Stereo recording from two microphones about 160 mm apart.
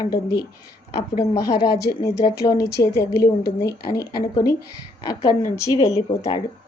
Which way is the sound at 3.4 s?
70° left (ahead or behind).